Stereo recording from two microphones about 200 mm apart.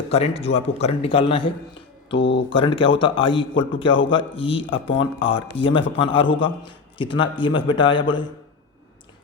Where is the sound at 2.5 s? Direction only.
25° left (ahead or behind).